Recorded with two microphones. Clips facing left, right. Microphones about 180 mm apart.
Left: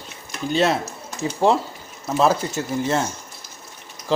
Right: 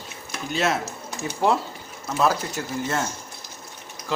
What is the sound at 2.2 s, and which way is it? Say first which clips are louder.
Speech: left 4 dB; 25° left (ahead or behind).